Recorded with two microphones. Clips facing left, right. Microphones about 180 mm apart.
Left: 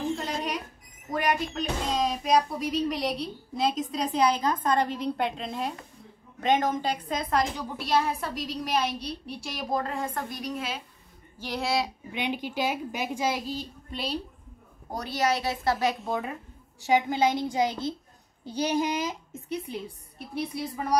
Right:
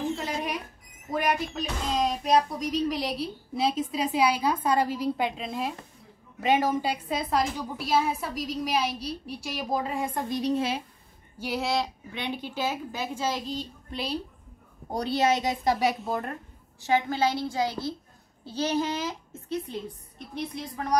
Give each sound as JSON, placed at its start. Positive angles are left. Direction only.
{"t": 0.1, "sound": "a sound", "side_deg": -5}
{"t": 1.1, "sound": "speech", "side_deg": -5}
{"t": 10.4, "sound": "a woman's voice", "side_deg": -30}
{"t": 11.3, "sound": "speech", "side_deg": -5}
{"t": 12.1, "sound": "a woman's voice", "side_deg": 15}
{"t": 14.9, "sound": "a woman's voice", "side_deg": -25}
{"t": 16.0, "sound": "speech", "side_deg": 0}
{"t": 16.8, "sound": "a woman's voice", "side_deg": 15}